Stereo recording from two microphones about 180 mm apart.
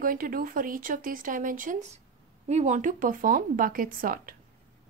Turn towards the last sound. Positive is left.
turn(degrees=-50)  # may be behind; listen again after turning